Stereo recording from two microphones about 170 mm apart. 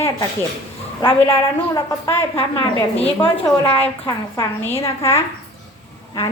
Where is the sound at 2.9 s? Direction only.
35° left (ahead or behind).